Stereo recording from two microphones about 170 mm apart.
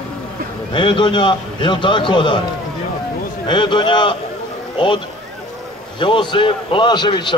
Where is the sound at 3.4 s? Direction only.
25° left (ahead or behind).